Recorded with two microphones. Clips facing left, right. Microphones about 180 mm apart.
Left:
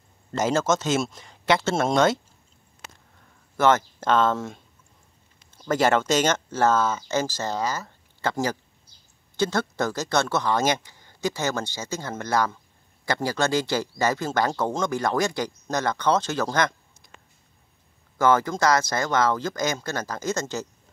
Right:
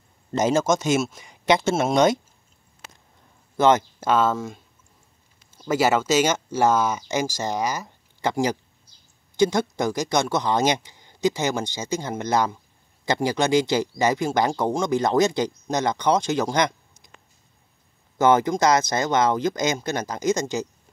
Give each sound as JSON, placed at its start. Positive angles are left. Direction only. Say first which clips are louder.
{"t": 0.3, "sound": "speech", "louder": "right 2 dB", "side_deg": -20}
{"t": 3.5, "sound": "speech", "louder": "right 2 dB", "side_deg": -15}
{"t": 18.1, "sound": "speech", "louder": "right 3 dB", "side_deg": -20}